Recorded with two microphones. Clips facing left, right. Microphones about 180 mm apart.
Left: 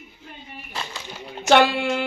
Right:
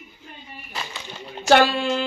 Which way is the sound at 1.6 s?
60° left (ahead or behind).